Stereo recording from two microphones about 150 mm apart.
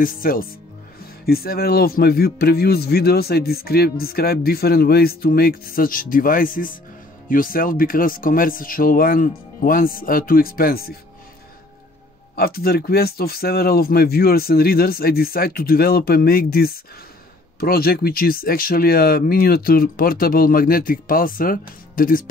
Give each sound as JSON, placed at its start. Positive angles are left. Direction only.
{"t": 0.0, "sound": "speech", "side_deg": 70}
{"t": 1.2, "sound": "speech", "side_deg": 90}
{"t": 12.4, "sound": "speech", "side_deg": 90}